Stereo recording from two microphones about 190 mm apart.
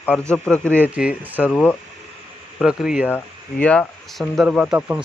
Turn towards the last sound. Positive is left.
turn(degrees=-5)  # may be behind; listen again after turning